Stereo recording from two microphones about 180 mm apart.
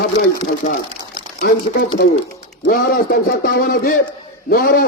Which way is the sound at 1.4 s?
60° left (ahead or behind).